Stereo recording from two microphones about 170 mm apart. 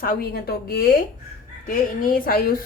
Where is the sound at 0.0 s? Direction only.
60° left (ahead or behind).